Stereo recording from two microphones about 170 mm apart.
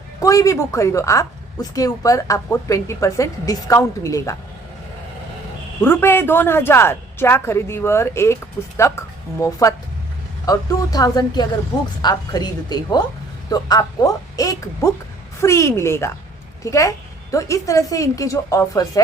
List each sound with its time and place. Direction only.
0.2 s a woman's voice: 20° left (ahead or behind)
5.8 s a woman's voice: 15° left (ahead or behind)